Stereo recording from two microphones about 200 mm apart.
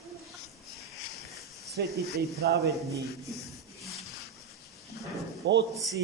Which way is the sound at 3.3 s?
Centre (ahead or behind).